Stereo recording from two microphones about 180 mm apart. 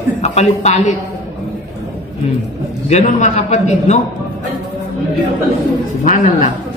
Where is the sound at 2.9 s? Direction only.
40° left (ahead or behind).